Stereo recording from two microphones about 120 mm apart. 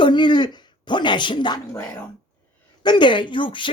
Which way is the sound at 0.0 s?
40° left (ahead or behind).